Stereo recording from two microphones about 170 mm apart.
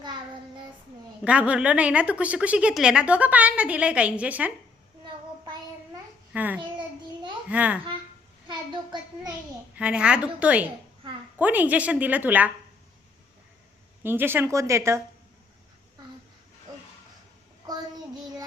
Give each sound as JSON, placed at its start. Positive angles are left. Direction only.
{"t": 0.0, "sound": "child singing", "side_deg": -25}
{"t": 1.2, "sound": "a woman's voice", "side_deg": -5}
{"t": 6.3, "sound": "babbling", "side_deg": -10}
{"t": 6.7, "sound": "child singing", "side_deg": -25}
{"t": 7.5, "sound": "a woman's voice", "side_deg": -10}
{"t": 8.4, "sound": "child singing", "side_deg": -25}
{"t": 9.7, "sound": "a woman's voice", "side_deg": -5}
{"t": 14.0, "sound": "a woman's voice", "side_deg": -15}